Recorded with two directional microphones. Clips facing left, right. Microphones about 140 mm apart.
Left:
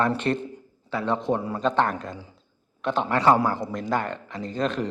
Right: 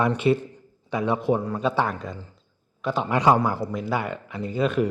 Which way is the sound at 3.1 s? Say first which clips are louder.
Even; 15° right (ahead or behind).